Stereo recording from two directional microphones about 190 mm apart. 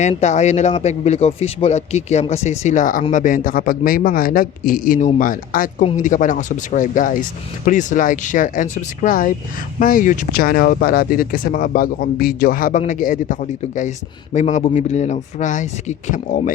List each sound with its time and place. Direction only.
0.0 s speech: 35° left (ahead or behind)